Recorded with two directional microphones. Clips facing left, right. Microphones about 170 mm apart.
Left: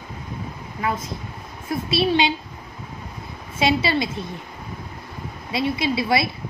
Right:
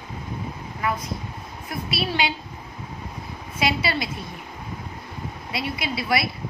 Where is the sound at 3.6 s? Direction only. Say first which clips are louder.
Left 4 dB; 25° left (ahead or behind).